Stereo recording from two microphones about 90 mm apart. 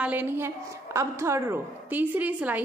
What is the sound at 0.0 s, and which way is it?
A woman's voice, 20° right (ahead or behind).